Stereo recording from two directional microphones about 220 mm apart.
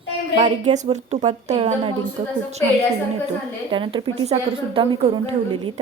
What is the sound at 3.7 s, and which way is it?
A woman's voice, 25° right (ahead or behind).